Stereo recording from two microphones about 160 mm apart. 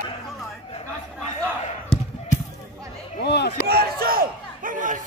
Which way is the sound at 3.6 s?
70° right (ahead or behind).